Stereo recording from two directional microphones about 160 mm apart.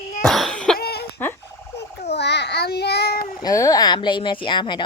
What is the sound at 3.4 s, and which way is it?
Speech, 20° left (ahead or behind).